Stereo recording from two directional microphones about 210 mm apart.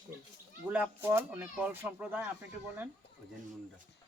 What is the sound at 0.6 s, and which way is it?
Speech, 10° right (ahead or behind).